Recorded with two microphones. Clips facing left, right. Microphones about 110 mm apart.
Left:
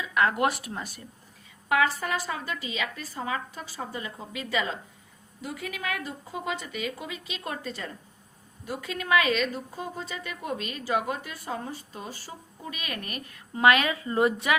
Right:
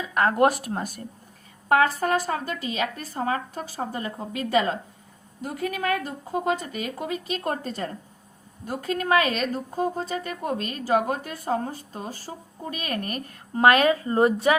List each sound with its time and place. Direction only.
0.0 s speech: 40° right (ahead or behind)